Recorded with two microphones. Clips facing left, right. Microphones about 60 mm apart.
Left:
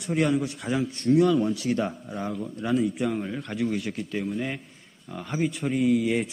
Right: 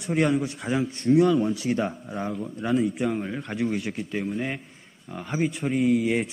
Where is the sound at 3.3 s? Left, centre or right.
Centre.